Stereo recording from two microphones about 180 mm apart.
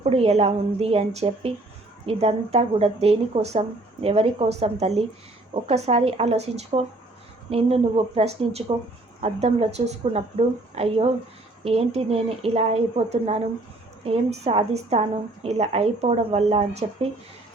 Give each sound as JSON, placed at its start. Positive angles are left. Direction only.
{"t": 0.0, "sound": "speech", "side_deg": -35}